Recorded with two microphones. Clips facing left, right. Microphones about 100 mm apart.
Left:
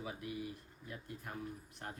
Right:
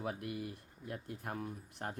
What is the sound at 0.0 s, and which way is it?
Speech, 60° right (ahead or behind).